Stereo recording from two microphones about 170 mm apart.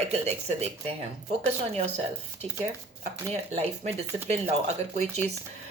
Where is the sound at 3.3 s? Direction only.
40° right (ahead or behind).